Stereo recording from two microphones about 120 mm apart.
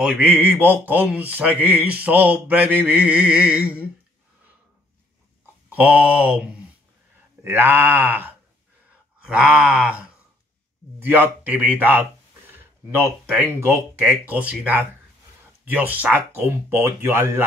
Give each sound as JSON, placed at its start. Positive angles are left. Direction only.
{"t": 0.0, "sound": "speech", "side_deg": -15}
{"t": 5.7, "sound": "speech", "side_deg": -10}
{"t": 13.3, "sound": "speech", "side_deg": -15}